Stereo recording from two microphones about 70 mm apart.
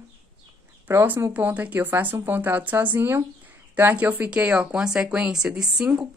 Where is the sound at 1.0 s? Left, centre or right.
Right; by 5.9 s centre.